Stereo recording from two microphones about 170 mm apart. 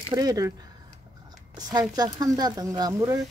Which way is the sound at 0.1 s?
20° right (ahead or behind).